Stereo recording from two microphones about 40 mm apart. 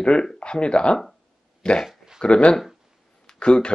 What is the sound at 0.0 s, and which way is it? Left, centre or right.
Speech, left.